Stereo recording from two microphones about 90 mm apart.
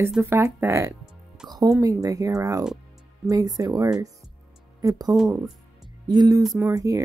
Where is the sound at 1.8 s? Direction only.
40° right (ahead or behind).